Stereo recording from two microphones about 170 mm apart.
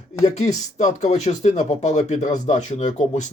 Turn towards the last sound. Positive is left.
turn(degrees=45)  # may be behind; listen again after turning